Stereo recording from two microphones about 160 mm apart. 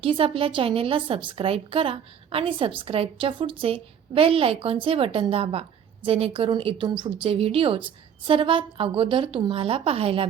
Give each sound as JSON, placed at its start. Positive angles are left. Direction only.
{"t": 0.0, "sound": "a woman's voice", "side_deg": -35}